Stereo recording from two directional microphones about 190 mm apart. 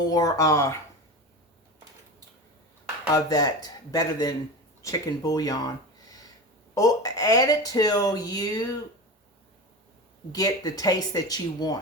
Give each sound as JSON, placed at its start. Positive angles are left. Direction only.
{"t": 0.1, "sound": "speech", "side_deg": 20}
{"t": 3.1, "sound": "speech", "side_deg": 20}
{"t": 10.3, "sound": "speech", "side_deg": 20}